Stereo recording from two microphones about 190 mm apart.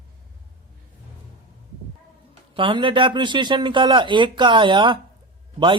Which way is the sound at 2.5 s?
25° right (ahead or behind).